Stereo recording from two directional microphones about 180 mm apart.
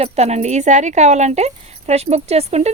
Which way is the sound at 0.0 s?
35° right (ahead or behind).